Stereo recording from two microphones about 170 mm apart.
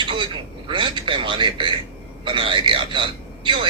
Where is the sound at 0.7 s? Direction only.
30° right (ahead or behind).